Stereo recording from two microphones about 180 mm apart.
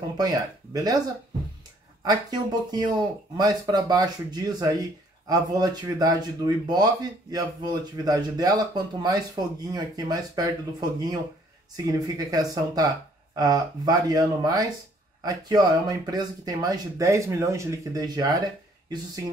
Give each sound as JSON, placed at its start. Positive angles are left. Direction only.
{"t": 0.2, "sound": "speech", "side_deg": -20}
{"t": 2.0, "sound": "speech", "side_deg": -20}